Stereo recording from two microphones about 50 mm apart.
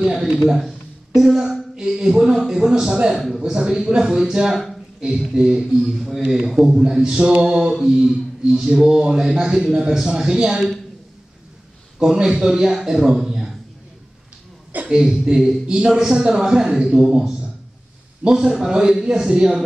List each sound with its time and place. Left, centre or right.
0.0 s a sound: centre
2.4 s speech: centre
12.0 s speech: centre
14.9 s speech: centre